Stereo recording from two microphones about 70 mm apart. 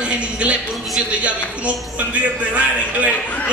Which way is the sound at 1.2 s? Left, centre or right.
Centre.